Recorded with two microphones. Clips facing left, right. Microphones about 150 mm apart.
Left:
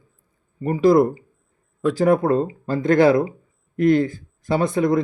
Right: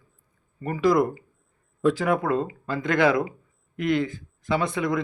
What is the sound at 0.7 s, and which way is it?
Speech, 30° left (ahead or behind).